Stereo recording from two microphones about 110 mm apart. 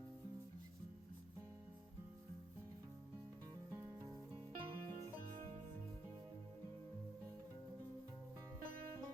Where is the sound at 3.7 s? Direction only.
30° right (ahead or behind).